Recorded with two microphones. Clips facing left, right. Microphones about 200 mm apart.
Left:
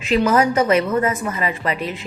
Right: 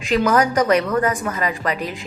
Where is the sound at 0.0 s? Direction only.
5° left (ahead or behind).